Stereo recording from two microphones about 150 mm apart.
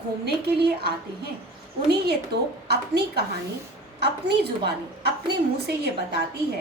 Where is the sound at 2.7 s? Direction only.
90° right.